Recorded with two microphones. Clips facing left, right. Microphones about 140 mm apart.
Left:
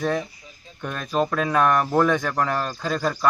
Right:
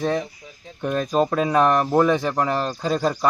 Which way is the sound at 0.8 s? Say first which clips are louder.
Right 8 dB; 25° right (ahead or behind).